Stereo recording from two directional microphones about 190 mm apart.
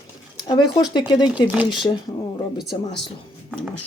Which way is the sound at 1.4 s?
5° right (ahead or behind).